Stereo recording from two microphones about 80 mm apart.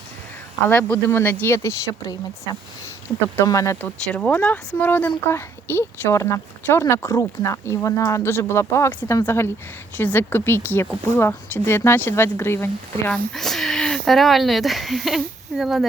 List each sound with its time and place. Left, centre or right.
0.7 s speech: left
3.4 s speech: left
4.1 s speech: centre; by 12.7 s left
13.1 s speech: centre